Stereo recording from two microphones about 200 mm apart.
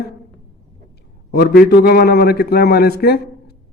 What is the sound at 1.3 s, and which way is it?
A man's voice, 50° left (ahead or behind).